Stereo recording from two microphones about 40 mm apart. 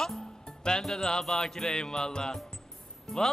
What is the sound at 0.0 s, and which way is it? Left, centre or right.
Music, centre.